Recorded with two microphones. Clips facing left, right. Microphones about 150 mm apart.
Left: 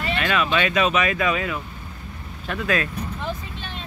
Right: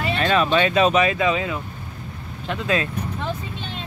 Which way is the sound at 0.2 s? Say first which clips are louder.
Right 4 dB; 35° right (ahead or behind).